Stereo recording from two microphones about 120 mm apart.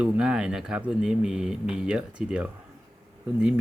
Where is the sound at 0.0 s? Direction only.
10° right (ahead or behind).